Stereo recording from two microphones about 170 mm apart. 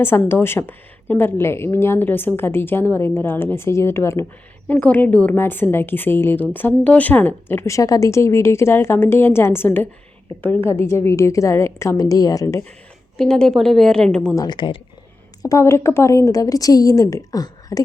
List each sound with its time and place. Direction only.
0.0 s a woman's voice: 15° left (ahead or behind)
13.1 s a woman's voice: 5° left (ahead or behind)
14.3 s a woman's voice: 25° left (ahead or behind)
15.4 s a woman's voice: 15° left (ahead or behind)